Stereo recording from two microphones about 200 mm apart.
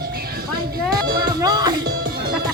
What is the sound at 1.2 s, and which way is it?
Music, 20° right (ahead or behind).